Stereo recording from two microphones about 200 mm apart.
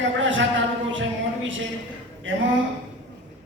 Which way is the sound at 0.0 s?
70° right (ahead or behind).